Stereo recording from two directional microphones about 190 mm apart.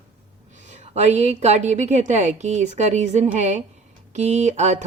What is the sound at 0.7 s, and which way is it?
Speech, 35° right (ahead or behind).